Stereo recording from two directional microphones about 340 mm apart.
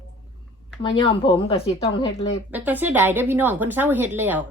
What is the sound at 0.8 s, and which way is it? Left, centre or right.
Speech, centre.